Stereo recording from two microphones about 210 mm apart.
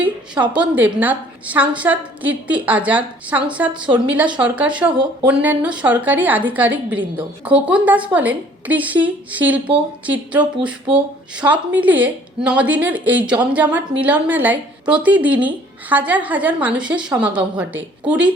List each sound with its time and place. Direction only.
0.5 s speech: 5° right (ahead or behind)